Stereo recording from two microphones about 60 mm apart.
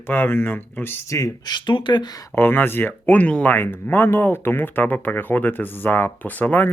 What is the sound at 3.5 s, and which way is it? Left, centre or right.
Speech, left.